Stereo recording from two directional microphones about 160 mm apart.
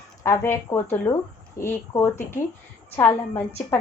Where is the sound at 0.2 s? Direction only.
15° left (ahead or behind).